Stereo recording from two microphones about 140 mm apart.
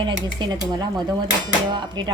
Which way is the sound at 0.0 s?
35° right (ahead or behind).